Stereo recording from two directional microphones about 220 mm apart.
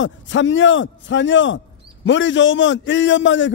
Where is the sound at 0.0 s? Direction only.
55° left (ahead or behind).